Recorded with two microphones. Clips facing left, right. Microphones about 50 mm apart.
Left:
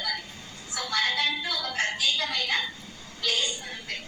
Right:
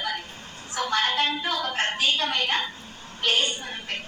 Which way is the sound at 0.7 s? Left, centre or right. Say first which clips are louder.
Right 3 dB; right.